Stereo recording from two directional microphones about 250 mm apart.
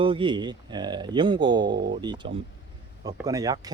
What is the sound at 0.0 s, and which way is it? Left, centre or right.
Speech, centre.